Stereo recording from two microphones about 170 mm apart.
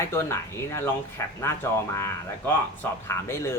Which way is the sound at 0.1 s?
15° left (ahead or behind).